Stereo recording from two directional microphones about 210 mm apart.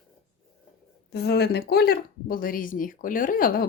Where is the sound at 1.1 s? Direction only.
50° left (ahead or behind).